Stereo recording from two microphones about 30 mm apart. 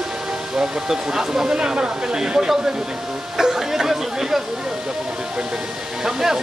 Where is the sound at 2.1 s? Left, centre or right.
Right.